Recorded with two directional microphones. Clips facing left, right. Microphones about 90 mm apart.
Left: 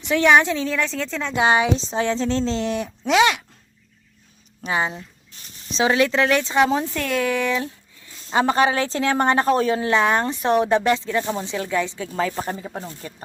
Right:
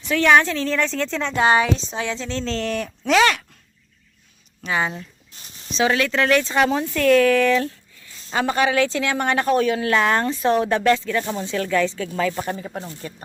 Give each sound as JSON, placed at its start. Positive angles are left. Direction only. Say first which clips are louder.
{"t": 0.0, "sound": "a woman's voice", "louder": "even", "side_deg": 20}
{"t": 4.6, "sound": "a woman's voice", "louder": "even", "side_deg": 25}
{"t": 8.3, "sound": "a woman's voice", "louder": "left 2 dB", "side_deg": 30}
{"t": 12.6, "sound": "a woman's voice", "louder": "even", "side_deg": 10}